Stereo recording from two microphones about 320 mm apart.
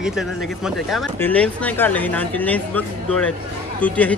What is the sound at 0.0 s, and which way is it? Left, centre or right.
Speech, centre.